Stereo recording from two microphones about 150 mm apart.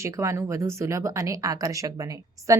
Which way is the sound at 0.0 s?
20° right (ahead or behind).